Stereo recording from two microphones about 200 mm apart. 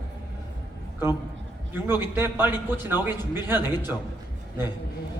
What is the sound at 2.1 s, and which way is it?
A man's voice, 10° right (ahead or behind).